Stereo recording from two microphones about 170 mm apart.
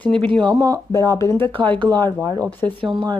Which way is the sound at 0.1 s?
30° right (ahead or behind).